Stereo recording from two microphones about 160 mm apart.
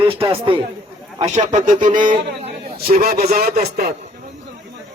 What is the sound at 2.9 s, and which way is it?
Speech, 70° right (ahead or behind).